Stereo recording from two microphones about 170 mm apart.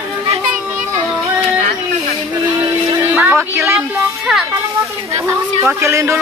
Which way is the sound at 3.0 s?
10° right (ahead or behind).